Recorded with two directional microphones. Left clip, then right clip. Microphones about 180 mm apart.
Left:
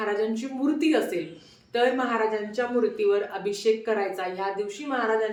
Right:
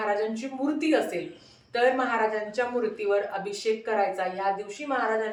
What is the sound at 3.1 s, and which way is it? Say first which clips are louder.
A woman's voice: left 2 dB; 15° left (ahead or behind).